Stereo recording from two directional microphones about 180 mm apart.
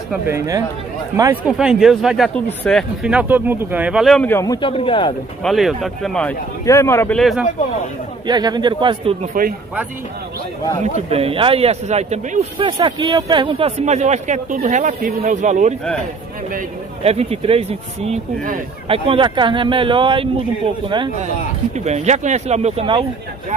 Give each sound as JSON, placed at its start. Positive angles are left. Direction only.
{"t": 0.3, "sound": "speech", "side_deg": -20}
{"t": 1.6, "sound": "speech", "side_deg": -5}
{"t": 4.6, "sound": "speech", "side_deg": 30}
{"t": 5.4, "sound": "speech", "side_deg": 0}
{"t": 6.6, "sound": "speech", "side_deg": 15}
{"t": 7.2, "sound": "speech", "side_deg": 0}
{"t": 8.3, "sound": "speech", "side_deg": -25}
{"t": 11.1, "sound": "speech", "side_deg": -35}
{"t": 17.0, "sound": "speech", "side_deg": -35}
{"t": 21.7, "sound": "speech", "side_deg": -40}